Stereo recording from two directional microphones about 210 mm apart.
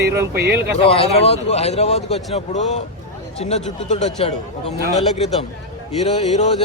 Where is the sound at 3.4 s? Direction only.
30° left (ahead or behind).